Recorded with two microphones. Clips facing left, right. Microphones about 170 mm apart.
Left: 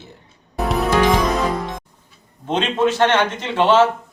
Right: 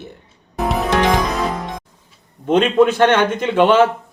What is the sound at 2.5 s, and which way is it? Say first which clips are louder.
A man's voice: right 5 dB; 55° right (ahead or behind).